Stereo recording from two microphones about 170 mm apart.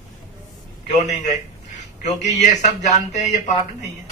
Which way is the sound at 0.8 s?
45° left (ahead or behind).